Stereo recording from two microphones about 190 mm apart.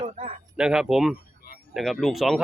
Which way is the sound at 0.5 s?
5° right (ahead or behind).